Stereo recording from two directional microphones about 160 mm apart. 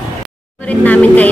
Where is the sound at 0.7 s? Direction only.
10° left (ahead or behind).